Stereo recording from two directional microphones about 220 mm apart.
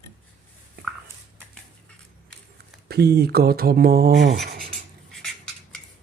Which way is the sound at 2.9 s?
45° right (ahead or behind).